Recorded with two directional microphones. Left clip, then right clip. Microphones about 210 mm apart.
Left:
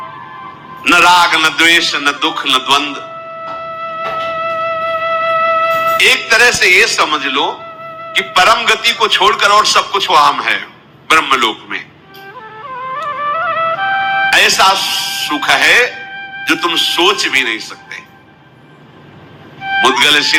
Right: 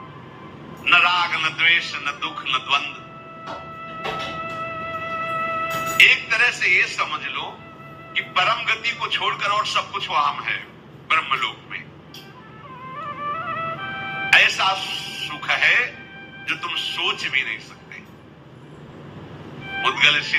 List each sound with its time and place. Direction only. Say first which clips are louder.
0.8 s a man's voice: left 9 dB; 50° left (ahead or behind)
4.4 s music: left 13 dB; 50° left (ahead or behind)
8.1 s a man's voice: left 11 dB; 50° left (ahead or behind)
12.9 s music: left 11 dB; 50° left (ahead or behind)
16.4 s a man's voice: left 12 dB; 50° left (ahead or behind)
19.8 s a man's voice: left 8 dB; 50° left (ahead or behind)